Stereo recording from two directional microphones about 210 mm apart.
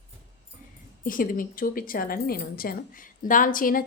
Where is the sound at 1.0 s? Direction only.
40° left (ahead or behind).